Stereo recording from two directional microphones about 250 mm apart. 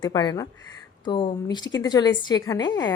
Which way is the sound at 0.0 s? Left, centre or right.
Centre.